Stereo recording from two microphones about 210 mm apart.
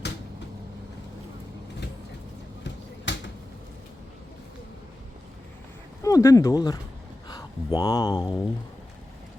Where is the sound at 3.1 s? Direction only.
60° left (ahead or behind).